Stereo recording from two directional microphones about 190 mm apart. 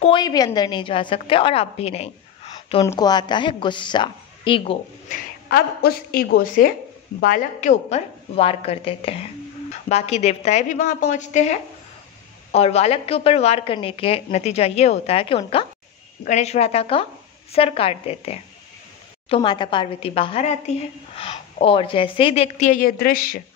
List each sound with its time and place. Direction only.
0.0 s a woman's voice: 25° left (ahead or behind)
2.8 s a woman's voice: 20° left (ahead or behind)
5.1 s a woman's voice: 55° left (ahead or behind)